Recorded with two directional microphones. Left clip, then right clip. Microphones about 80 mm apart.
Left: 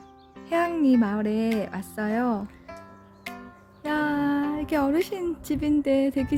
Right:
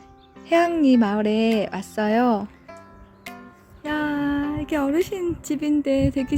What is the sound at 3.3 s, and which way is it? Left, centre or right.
Speech, centre.